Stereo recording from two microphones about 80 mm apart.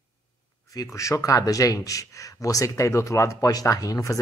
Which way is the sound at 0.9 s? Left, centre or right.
Left.